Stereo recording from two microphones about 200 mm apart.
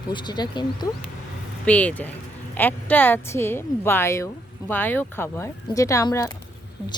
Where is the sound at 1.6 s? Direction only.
5° left (ahead or behind).